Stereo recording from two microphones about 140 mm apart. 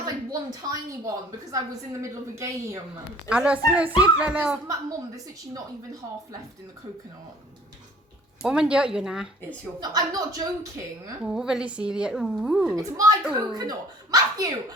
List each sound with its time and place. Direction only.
0.0 s a woman's voice: 25° right (ahead or behind)
3.2 s a woman's voice: 5° right (ahead or behind)
8.4 s a woman's voice: 5° right (ahead or behind)
9.8 s a woman's voice: 30° right (ahead or behind)
11.3 s a woman's voice: 5° right (ahead or behind)
12.7 s a woman's voice: 25° right (ahead or behind)